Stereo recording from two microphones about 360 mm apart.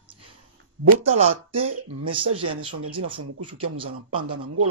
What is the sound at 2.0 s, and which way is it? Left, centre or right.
Speech, centre.